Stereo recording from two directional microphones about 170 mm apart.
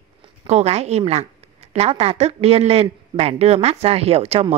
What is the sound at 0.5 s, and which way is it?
A woman's voice, 40° right (ahead or behind).